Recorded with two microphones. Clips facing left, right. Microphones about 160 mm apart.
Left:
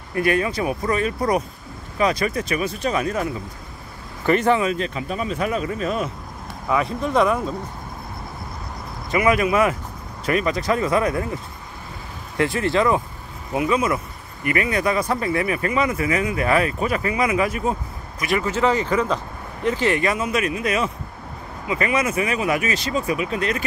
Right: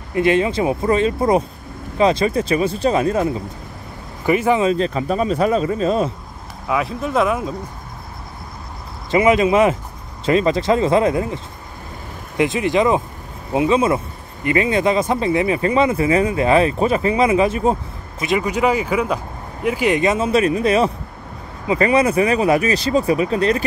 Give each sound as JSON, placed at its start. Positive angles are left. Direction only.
{"t": 0.1, "sound": "speech", "side_deg": -25}
{"t": 4.3, "sound": "speech", "side_deg": -10}
{"t": 4.6, "sound": "speech", "side_deg": -30}
{"t": 6.7, "sound": "speech", "side_deg": -5}
{"t": 9.1, "sound": "speech", "side_deg": -20}
{"t": 12.4, "sound": "speech", "side_deg": -15}